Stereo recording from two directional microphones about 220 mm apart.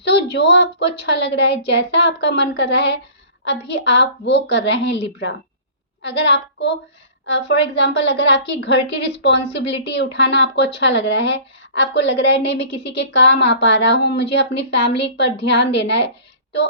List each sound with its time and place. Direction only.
0.0 s a woman's voice: 50° left (ahead or behind)